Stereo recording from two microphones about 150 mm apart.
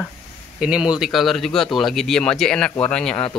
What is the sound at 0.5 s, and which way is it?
Speech, 5° right (ahead or behind).